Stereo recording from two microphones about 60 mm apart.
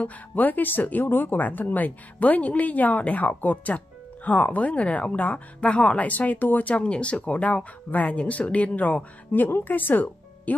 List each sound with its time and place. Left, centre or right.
0.0 s speech: left